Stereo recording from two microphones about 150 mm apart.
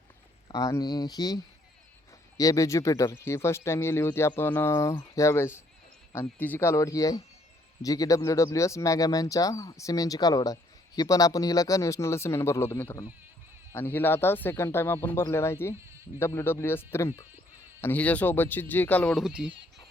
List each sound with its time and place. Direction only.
0.4 s speech: 20° left (ahead or behind)
2.4 s speech: 20° left (ahead or behind)
19.2 s speech: 5° right (ahead or behind)